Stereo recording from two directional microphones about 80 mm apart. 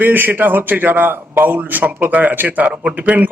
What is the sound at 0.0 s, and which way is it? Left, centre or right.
A man's voice, right.